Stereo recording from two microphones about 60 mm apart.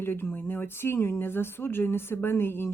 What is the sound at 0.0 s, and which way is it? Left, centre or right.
A woman's voice, left.